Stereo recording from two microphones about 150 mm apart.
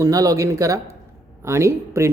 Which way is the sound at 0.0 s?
25° right (ahead or behind).